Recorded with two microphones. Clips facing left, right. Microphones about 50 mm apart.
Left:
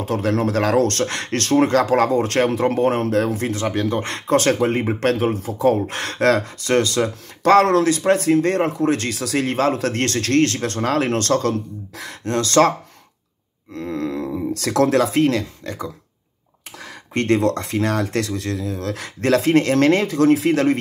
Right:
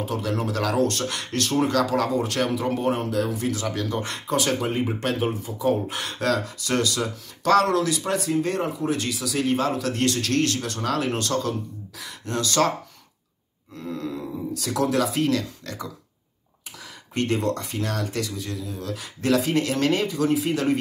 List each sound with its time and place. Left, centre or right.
0.0 s speech: left
13.7 s speech: left
15.6 s speech: left
17.1 s speech: left